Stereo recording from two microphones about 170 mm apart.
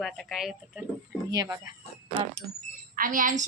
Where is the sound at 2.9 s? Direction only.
55° right (ahead or behind).